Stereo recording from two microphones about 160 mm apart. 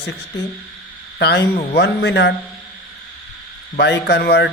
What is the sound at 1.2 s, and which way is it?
A man's voice, 90° left.